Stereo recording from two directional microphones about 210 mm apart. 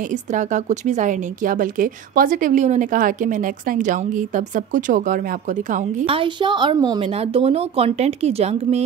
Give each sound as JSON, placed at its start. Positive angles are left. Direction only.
{"t": 0.1, "sound": "a woman's voice", "side_deg": -35}